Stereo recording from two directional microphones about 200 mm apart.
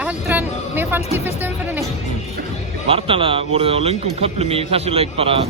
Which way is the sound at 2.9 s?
30° right (ahead or behind).